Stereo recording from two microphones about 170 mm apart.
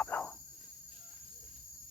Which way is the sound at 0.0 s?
10° left (ahead or behind).